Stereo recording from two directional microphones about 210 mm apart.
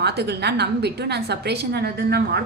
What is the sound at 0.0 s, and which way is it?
A woman's voice, 50° right (ahead or behind).